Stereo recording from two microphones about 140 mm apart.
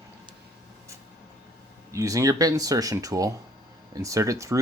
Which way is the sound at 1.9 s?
25° right (ahead or behind).